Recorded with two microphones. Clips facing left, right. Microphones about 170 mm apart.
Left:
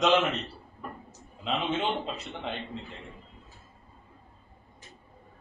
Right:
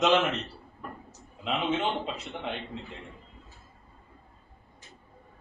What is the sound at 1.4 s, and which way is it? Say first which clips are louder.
Speech: right 1 dB; centre (ahead or behind).